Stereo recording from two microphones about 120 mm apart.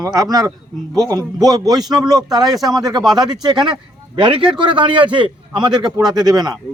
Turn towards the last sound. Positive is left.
turn(degrees=-30)  # may be behind; listen again after turning